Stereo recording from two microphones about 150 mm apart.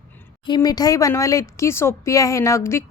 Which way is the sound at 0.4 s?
30° left (ahead or behind).